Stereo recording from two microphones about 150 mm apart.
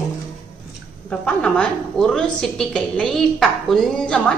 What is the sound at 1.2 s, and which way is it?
A woman's voice, 5° left (ahead or behind).